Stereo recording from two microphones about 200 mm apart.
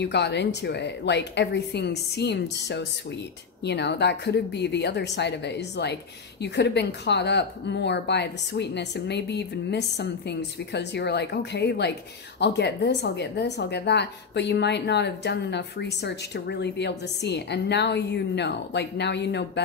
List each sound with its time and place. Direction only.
0.0 s a woman's voice: 60° left (ahead or behind)